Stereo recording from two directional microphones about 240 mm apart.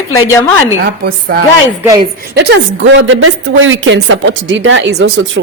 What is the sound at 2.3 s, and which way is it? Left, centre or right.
A woman's voice, right.